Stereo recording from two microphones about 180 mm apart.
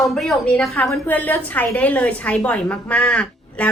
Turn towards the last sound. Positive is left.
turn(degrees=10)  # may be behind; listen again after turning